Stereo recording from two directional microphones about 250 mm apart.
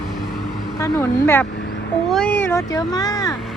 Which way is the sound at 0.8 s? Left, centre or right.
Centre.